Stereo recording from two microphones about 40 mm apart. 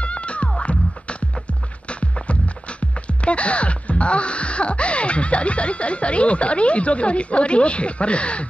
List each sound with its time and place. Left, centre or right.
0.0 s music: left
3.1 s speech: left